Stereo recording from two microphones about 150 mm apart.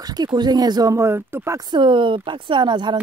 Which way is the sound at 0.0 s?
25° right (ahead or behind).